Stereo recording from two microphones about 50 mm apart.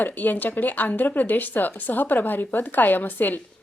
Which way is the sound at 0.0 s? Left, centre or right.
Left.